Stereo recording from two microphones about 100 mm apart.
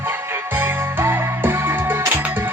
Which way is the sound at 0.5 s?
20° right (ahead or behind).